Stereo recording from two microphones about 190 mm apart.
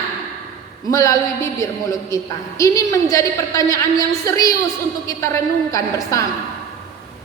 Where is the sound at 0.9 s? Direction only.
15° left (ahead or behind).